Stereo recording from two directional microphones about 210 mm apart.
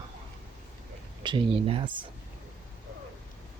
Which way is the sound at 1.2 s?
25° right (ahead or behind).